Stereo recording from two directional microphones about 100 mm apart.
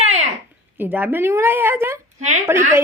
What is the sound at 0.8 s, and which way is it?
Speech, 20° right (ahead or behind).